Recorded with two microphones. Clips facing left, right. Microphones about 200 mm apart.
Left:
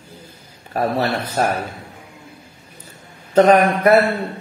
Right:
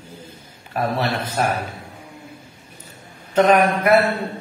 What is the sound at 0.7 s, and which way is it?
Speech, 40° left (ahead or behind).